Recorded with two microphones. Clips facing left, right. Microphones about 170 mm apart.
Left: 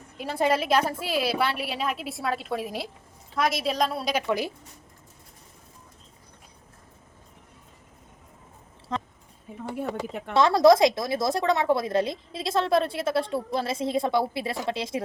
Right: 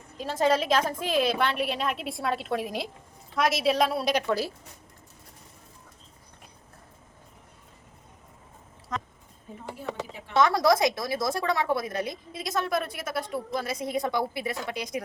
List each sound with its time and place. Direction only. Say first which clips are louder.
0.2 s a woman's voice: even; 10° left (ahead or behind)
4.3 s speech: left 1 dB; 15° left (ahead or behind)
8.9 s a sound: left 3 dB; 30° left (ahead or behind)
9.7 s speech: left 5 dB; 60° left (ahead or behind)
10.3 s a woman's voice: left 4 dB; 25° left (ahead or behind)